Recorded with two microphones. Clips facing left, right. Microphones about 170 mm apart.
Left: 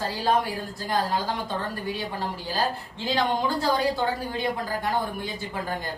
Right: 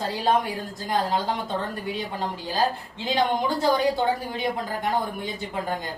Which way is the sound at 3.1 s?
20° right (ahead or behind).